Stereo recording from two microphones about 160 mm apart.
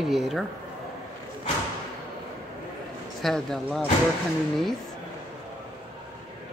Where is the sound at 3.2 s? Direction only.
Centre (ahead or behind).